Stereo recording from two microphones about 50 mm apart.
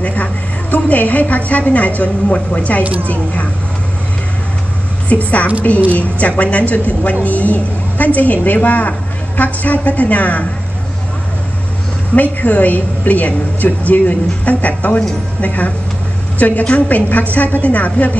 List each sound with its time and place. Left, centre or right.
0.0 s a woman's voice: left
5.1 s a woman's voice: left
12.2 s a woman's voice: left